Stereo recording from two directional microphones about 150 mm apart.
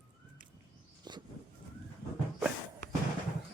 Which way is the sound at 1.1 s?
30° right (ahead or behind).